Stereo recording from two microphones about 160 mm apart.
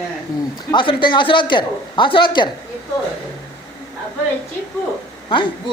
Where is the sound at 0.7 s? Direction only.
30° left (ahead or behind).